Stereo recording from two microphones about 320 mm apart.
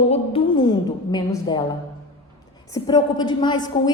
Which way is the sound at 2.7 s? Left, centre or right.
Centre.